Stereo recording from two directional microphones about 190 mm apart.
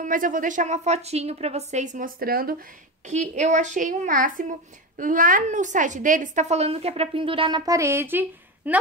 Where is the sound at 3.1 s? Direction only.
40° right (ahead or behind).